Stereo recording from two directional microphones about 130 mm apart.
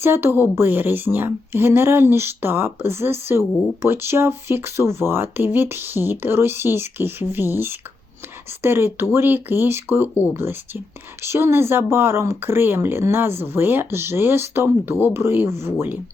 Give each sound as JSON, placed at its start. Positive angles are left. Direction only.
{"t": 0.0, "sound": "speech", "side_deg": -20}